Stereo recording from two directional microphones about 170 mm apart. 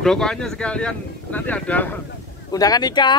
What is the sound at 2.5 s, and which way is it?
Speech, 20° left (ahead or behind).